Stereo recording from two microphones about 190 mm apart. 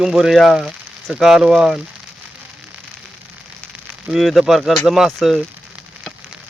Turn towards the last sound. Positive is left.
turn(degrees=0)  # may be behind; listen again after turning